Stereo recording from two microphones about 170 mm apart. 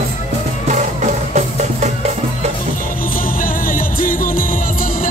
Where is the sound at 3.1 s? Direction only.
55° left (ahead or behind).